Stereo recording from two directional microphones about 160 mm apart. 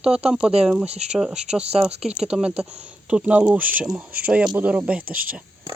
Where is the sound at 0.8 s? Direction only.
40° right (ahead or behind).